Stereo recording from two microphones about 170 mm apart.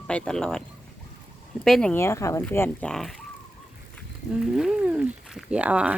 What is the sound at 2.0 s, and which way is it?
Speech, 15° left (ahead or behind).